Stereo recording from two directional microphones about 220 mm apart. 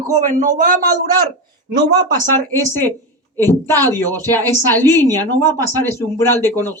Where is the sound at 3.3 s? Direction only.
10° left (ahead or behind).